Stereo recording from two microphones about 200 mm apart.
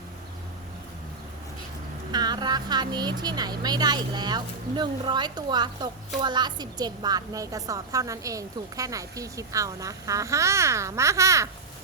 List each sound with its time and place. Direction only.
2.1 s a woman's voice: 20° right (ahead or behind)